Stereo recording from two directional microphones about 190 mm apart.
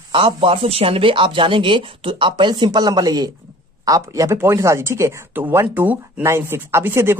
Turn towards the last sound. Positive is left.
turn(degrees=-10)  # may be behind; listen again after turning